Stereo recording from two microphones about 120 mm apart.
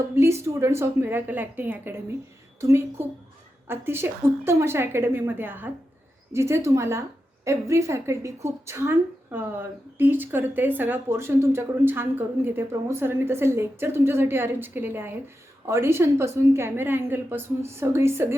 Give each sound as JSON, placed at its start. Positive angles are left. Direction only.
{"t": 0.2, "sound": "speech", "side_deg": -25}